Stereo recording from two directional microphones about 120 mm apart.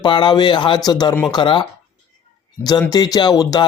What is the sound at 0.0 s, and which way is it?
Speech, 40° left (ahead or behind).